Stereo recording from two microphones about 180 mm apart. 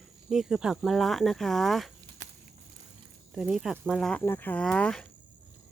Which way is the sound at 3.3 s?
5° right (ahead or behind).